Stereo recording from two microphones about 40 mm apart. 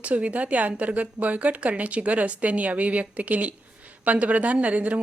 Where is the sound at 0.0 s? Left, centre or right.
Right.